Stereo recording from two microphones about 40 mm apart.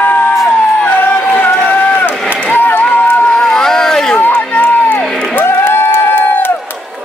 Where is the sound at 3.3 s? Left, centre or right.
Centre.